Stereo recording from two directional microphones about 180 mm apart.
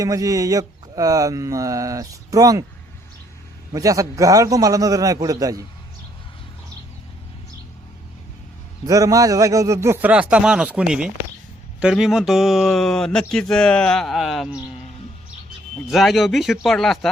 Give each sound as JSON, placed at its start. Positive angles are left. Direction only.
{"t": 0.0, "sound": "mantra", "side_deg": -20}
{"t": 3.7, "sound": "mantra", "side_deg": -20}
{"t": 8.9, "sound": "a man's voice", "side_deg": -20}
{"t": 15.9, "sound": "speech", "side_deg": 0}